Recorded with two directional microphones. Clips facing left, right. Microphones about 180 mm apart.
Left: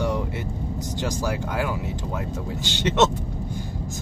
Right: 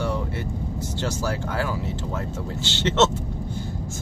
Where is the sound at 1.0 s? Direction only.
15° left (ahead or behind).